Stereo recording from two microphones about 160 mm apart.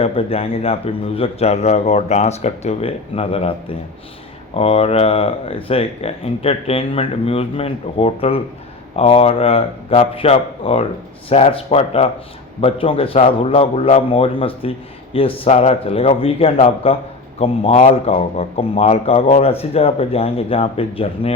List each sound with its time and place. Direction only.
0.0 s speech: 35° left (ahead or behind)
4.5 s speech: 35° left (ahead or behind)